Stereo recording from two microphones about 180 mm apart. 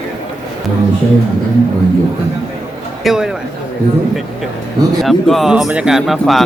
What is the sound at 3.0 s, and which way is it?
Speech, 5° right (ahead or behind).